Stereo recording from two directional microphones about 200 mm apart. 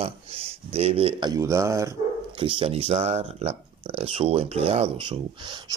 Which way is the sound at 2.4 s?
25° right (ahead or behind).